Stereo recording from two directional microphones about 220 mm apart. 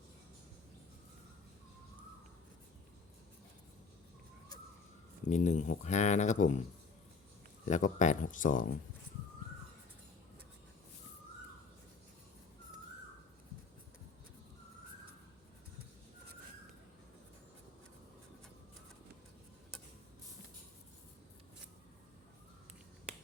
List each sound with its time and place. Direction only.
5.3 s speech: 30° left (ahead or behind)
7.6 s speech: 35° left (ahead or behind)